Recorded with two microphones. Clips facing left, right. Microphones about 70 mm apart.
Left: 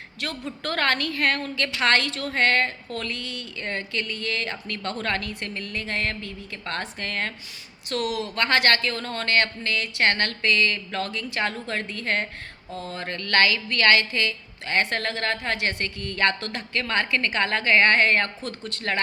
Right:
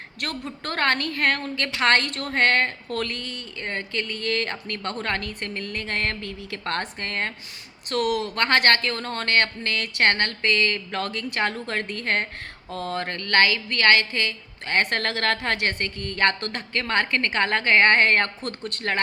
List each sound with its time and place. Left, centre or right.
0.2 s a woman's voice: right
7.9 s a woman's voice: right
11.6 s speech: right
12.7 s speech: right
15.6 s speech: right